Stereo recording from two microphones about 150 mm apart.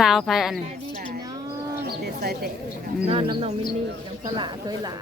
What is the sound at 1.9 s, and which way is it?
Bird, 90° right.